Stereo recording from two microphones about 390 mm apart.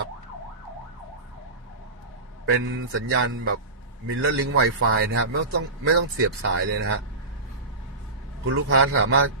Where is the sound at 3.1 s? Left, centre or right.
Right.